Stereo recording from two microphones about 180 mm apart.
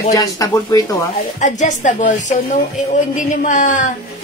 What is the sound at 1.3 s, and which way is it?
A woman's voice, 40° left (ahead or behind).